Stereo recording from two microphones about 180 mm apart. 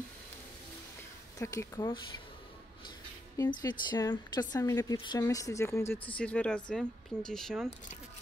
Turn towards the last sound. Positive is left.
turn(degrees=0)  # may be behind; listen again after turning